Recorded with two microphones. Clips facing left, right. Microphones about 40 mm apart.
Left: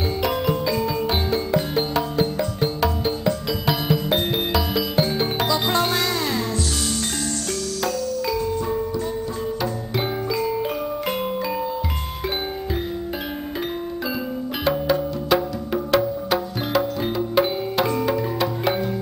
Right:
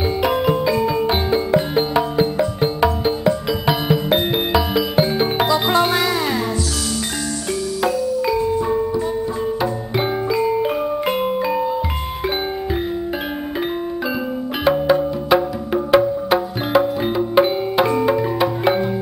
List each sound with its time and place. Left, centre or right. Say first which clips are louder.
0.2 s music: right 5 dB; centre
7.8 s music: right 6 dB; centre
14.6 s music: right 6 dB; centre